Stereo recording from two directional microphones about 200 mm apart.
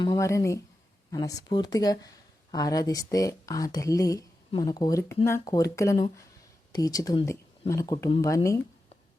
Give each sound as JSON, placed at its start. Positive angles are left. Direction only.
{"t": 0.0, "sound": "speech", "side_deg": 15}